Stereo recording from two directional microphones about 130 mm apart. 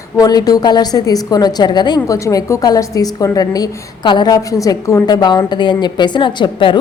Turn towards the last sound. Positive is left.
turn(degrees=40)  # may be behind; listen again after turning